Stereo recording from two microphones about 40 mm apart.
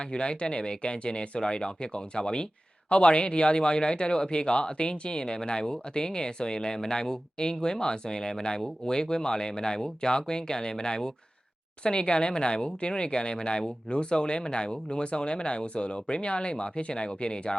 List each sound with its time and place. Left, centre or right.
0.0 s speech: left